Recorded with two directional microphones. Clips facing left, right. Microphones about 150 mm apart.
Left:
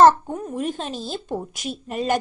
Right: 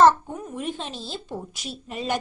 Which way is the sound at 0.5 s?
40° left (ahead or behind).